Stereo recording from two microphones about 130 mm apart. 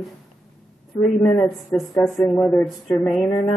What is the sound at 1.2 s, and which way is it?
Speech, 5° left (ahead or behind).